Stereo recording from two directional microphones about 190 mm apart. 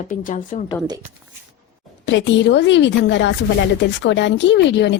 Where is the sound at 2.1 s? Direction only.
70° left (ahead or behind).